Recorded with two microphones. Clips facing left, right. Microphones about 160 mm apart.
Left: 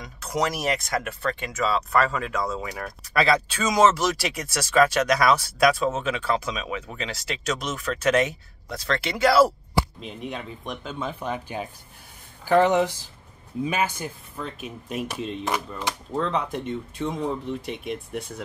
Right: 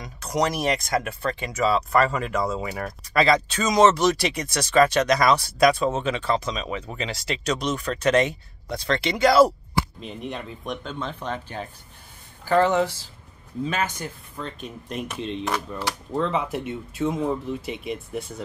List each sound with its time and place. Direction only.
0.0 s speech: 5° left (ahead or behind)